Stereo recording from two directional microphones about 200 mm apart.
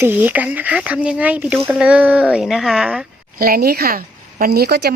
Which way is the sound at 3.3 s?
50° right (ahead or behind).